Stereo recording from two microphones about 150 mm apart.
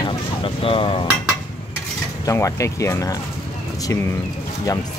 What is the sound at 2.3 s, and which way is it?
Speech, 20° left (ahead or behind).